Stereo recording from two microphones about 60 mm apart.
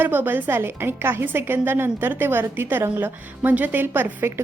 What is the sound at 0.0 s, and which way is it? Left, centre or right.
A woman's voice, right.